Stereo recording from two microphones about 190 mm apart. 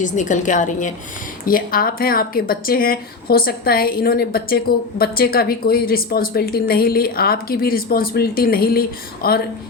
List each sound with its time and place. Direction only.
0.0 s a woman's voice: 40° left (ahead or behind)